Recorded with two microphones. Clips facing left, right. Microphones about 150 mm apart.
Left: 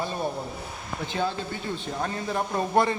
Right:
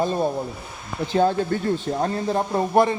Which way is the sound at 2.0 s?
30° right (ahead or behind).